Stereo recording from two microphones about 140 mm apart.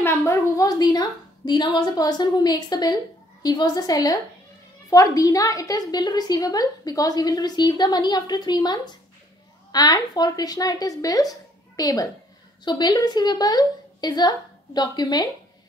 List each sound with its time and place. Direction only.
0.0 s a woman's voice: 20° left (ahead or behind)